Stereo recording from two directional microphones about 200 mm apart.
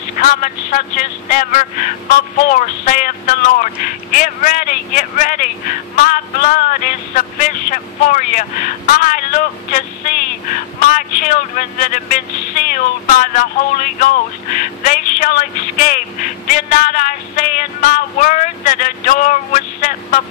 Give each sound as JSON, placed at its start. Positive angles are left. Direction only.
{"t": 0.2, "sound": "speech", "side_deg": 40}